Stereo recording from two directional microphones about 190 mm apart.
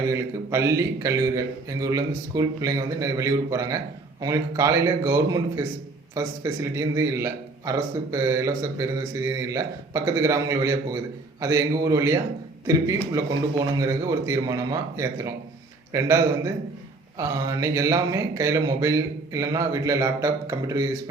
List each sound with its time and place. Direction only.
0.1 s speech: 15° right (ahead or behind)